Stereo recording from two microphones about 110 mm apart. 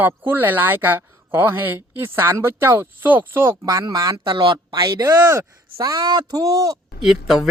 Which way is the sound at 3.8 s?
35° right (ahead or behind).